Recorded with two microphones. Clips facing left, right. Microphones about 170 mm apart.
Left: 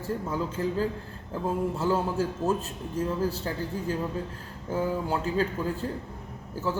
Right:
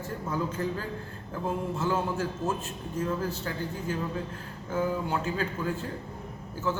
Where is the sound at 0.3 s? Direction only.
30° left (ahead or behind).